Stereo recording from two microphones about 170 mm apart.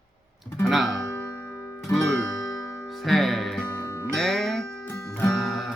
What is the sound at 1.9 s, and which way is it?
Music, 5° left (ahead or behind).